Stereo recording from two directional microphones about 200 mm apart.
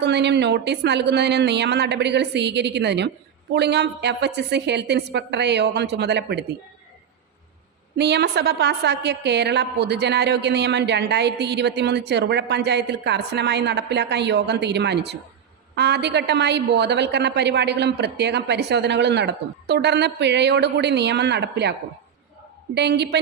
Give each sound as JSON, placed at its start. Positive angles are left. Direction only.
{"t": 0.0, "sound": "a woman's voice", "side_deg": -55}
{"t": 7.9, "sound": "a woman's voice", "side_deg": -55}